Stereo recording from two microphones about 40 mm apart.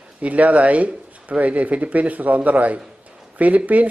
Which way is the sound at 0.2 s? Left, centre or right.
Right.